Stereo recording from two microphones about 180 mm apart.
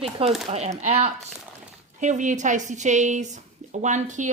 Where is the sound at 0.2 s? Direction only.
30° right (ahead or behind).